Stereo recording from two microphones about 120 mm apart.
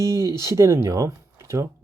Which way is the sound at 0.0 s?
25° right (ahead or behind).